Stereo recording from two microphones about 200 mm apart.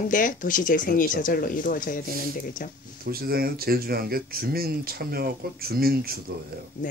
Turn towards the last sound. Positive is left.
turn(degrees=-50)  # may be behind; listen again after turning